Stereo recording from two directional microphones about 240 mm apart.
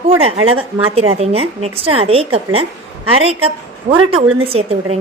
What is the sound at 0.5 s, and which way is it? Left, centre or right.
A woman's voice, right.